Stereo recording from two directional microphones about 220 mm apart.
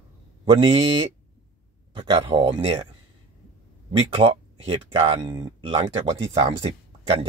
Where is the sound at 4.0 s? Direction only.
25° right (ahead or behind).